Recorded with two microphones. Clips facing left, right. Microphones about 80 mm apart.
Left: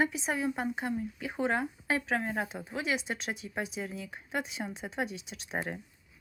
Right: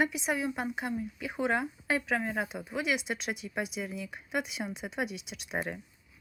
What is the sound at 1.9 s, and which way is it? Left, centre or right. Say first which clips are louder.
Speech: right 1 dB; left.